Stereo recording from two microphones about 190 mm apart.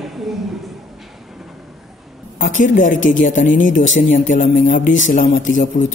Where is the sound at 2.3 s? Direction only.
45° left (ahead or behind).